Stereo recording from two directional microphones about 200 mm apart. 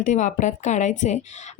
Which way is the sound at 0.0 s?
40° left (ahead or behind).